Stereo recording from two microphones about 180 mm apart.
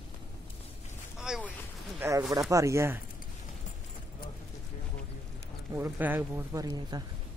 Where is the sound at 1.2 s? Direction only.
5° right (ahead or behind).